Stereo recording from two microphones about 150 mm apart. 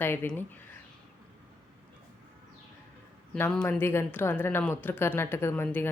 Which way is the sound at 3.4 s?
10° left (ahead or behind).